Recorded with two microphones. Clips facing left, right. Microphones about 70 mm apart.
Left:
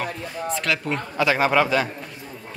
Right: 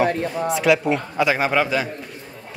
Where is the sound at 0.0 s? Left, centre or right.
Right.